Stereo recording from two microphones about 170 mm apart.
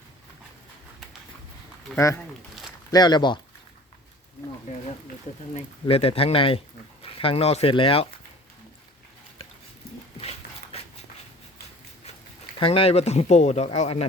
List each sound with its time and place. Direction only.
2.0 s speech: 20° left (ahead or behind)
2.6 s a sound: centre (ahead or behind)
2.9 s speech: 25° left (ahead or behind)
4.7 s speech: 45° left (ahead or behind)
5.8 s speech: 35° left (ahead or behind)
9.8 s dog: 65° left (ahead or behind)
10.2 s dog: 35° left (ahead or behind)
12.5 s speech: 35° left (ahead or behind)